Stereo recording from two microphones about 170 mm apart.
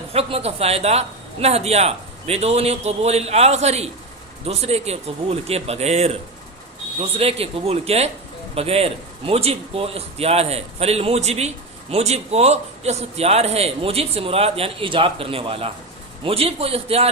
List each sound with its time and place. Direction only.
0.1 s a man's voice: 35° right (ahead or behind)